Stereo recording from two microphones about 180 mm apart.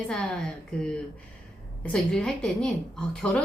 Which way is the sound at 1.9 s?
5° left (ahead or behind).